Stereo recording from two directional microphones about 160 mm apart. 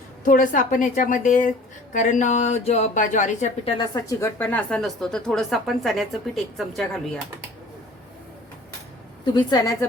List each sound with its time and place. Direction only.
0.3 s a woman's voice: 55° left (ahead or behind)
3.8 s a woman's voice: 25° left (ahead or behind); by 7.0 s centre (ahead or behind)
9.2 s a woman's voice: 25° left (ahead or behind)